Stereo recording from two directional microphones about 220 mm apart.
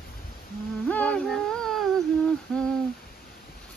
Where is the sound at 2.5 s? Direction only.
5° left (ahead or behind).